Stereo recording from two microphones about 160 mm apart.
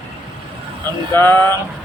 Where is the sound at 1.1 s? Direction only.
15° left (ahead or behind).